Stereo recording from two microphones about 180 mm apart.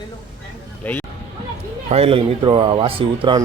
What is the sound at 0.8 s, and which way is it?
Speech, 10° left (ahead or behind).